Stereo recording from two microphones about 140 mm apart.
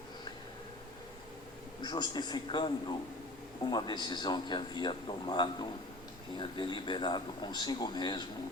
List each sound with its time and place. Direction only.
1.8 s speech: 30° left (ahead or behind)